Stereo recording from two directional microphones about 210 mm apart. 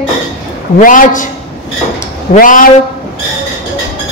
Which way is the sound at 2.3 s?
40° left (ahead or behind).